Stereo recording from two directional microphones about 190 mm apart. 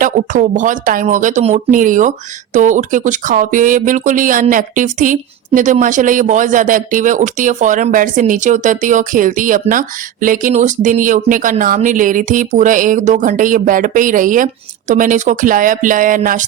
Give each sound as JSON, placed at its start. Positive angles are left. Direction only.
{"t": 0.0, "sound": "speech", "side_deg": -40}